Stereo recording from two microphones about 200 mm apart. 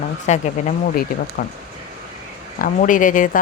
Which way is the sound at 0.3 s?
35° left (ahead or behind).